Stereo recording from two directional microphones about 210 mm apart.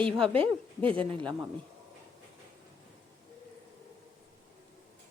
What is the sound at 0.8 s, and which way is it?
Speech, 25° right (ahead or behind).